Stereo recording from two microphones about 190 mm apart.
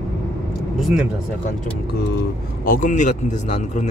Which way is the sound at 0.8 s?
Centre (ahead or behind).